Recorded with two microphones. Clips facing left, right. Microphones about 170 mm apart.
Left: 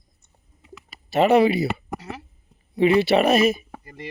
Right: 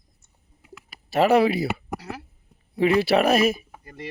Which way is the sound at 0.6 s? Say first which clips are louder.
Left 2 dB; centre (ahead or behind).